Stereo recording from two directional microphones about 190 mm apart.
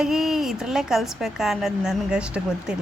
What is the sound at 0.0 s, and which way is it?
A woman's voice, centre (ahead or behind).